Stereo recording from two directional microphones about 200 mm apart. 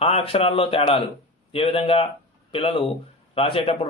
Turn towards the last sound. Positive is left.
turn(degrees=25)  # may be behind; listen again after turning